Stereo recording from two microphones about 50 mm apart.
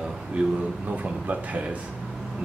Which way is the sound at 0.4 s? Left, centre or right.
Right.